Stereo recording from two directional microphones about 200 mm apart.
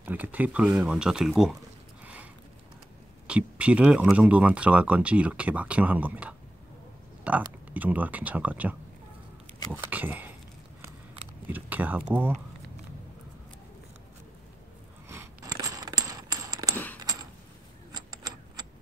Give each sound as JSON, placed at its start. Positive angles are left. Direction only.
{"t": 0.0, "sound": "speech", "side_deg": -10}
{"t": 3.3, "sound": "speech", "side_deg": -5}
{"t": 11.4, "sound": "speech", "side_deg": -10}
{"t": 15.0, "sound": "scissors", "side_deg": -15}
{"t": 16.7, "sound": "a sound", "side_deg": 10}
{"t": 17.9, "sound": "a sound", "side_deg": -20}